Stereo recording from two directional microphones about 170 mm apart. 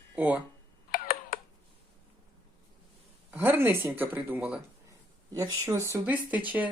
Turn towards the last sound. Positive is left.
turn(degrees=-10)  # may be behind; listen again after turning